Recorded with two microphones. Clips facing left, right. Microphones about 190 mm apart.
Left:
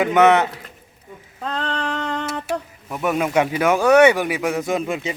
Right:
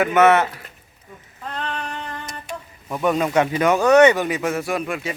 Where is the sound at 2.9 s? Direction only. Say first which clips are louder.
Right 1 dB; 5° left (ahead or behind).